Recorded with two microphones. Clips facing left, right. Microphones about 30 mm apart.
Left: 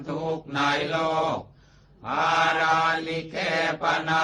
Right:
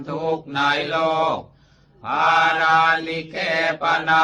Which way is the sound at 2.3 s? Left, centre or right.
Right.